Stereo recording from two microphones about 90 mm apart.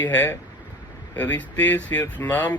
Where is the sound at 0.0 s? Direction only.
20° left (ahead or behind).